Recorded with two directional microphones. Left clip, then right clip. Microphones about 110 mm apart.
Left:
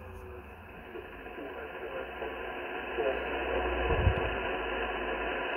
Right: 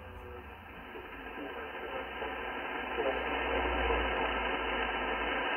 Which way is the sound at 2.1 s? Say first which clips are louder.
Even; 35° left (ahead or behind).